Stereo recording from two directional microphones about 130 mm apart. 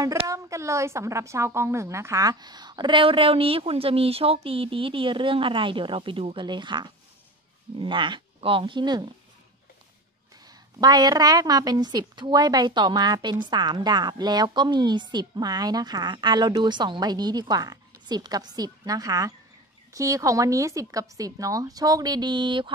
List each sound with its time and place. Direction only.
0.3 s a woman's voice: 25° right (ahead or behind)
10.4 s a woman's voice: 30° right (ahead or behind)